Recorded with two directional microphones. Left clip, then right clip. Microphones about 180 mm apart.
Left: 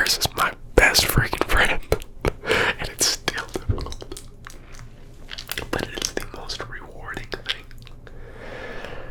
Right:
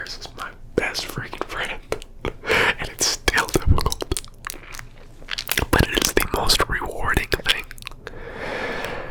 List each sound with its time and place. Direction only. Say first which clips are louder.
0.0 s whispering: left 12 dB; 55° left (ahead or behind)
0.8 s whispering: left 8 dB; 35° left (ahead or behind)
2.4 s gasp: right 3 dB; centre (ahead or behind)
3.4 s whispering: right 8 dB; 45° right (ahead or behind)
4.2 s crunch: right 9 dB; 55° right (ahead or behind)
5.3 s whispering: right 7 dB; 45° right (ahead or behind); by 9.0 s 30° right (ahead or behind)